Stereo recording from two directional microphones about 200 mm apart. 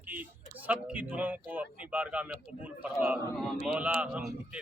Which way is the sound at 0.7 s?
5° right (ahead or behind).